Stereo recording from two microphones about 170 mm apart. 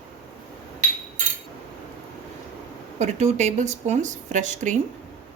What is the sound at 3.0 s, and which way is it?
A woman's voice, 40° right (ahead or behind).